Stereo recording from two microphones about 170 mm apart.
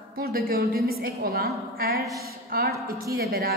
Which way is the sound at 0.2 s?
60° right (ahead or behind).